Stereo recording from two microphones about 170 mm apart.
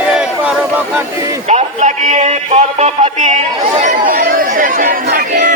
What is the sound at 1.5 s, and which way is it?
Music, 45° right (ahead or behind).